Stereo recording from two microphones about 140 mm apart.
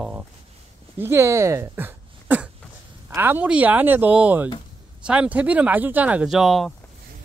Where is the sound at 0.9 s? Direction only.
20° right (ahead or behind).